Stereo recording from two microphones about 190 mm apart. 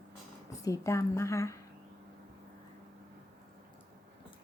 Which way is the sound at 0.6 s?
15° left (ahead or behind).